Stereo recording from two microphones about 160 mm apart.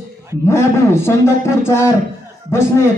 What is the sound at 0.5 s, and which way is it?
A man's voice, 15° left (ahead or behind).